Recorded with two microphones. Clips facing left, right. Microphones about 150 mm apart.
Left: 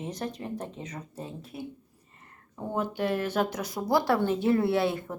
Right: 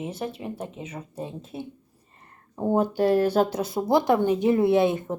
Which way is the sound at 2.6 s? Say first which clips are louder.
Right 8 dB; 35° right (ahead or behind).